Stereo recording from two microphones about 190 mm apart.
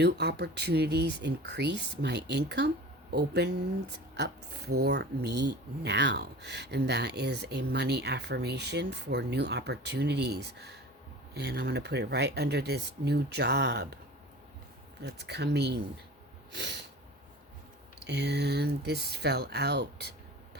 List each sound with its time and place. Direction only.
0.0 s speech: 60° right (ahead or behind)
15.0 s speech: 60° right (ahead or behind)
16.5 s sneeze: 65° right (ahead or behind)
18.0 s speech: 60° right (ahead or behind)